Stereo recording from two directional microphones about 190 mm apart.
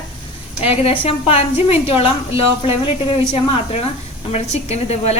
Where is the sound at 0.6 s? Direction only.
30° left (ahead or behind).